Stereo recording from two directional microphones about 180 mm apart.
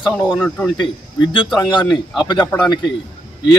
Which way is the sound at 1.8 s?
Centre (ahead or behind).